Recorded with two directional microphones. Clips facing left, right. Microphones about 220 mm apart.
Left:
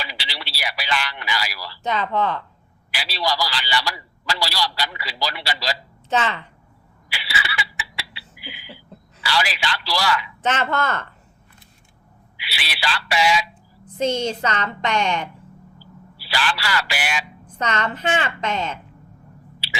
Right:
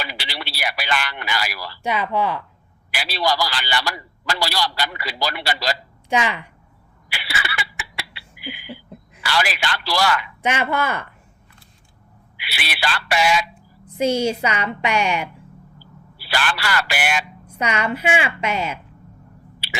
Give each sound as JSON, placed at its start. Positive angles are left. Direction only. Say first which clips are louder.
{"t": 0.0, "sound": "a sound", "louder": "right 3 dB", "side_deg": -55}
{"t": 1.8, "sound": "a woman's voice", "louder": "right 1 dB", "side_deg": -10}
{"t": 2.9, "sound": "a man's voice", "louder": "right 3 dB", "side_deg": -55}
{"t": 6.1, "sound": "a woman's voice", "louder": "right 1 dB", "side_deg": -10}
{"t": 7.1, "sound": "laughter", "louder": "even", "side_deg": -55}
{"t": 9.2, "sound": "a man's voice", "louder": "right 1 dB", "side_deg": -55}
{"t": 10.4, "sound": "a woman's voice", "louder": "right 1 dB", "side_deg": -10}
{"t": 12.4, "sound": "a man's voice", "louder": "right 3 dB", "side_deg": -55}
{"t": 13.5, "sound": "a woman's voice", "louder": "even", "side_deg": -10}
{"t": 16.1, "sound": "a man's voice", "louder": "right 1 dB", "side_deg": -55}
{"t": 17.4, "sound": "a woman's voice", "louder": "left 1 dB", "side_deg": -10}